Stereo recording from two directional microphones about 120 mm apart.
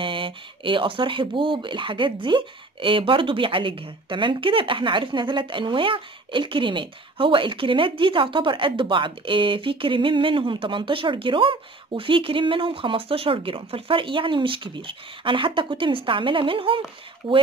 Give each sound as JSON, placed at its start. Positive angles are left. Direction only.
{"t": 0.0, "sound": "speech", "side_deg": -45}